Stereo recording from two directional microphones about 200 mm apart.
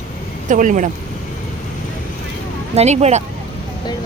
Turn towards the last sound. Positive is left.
turn(degrees=-35)  # may be behind; listen again after turning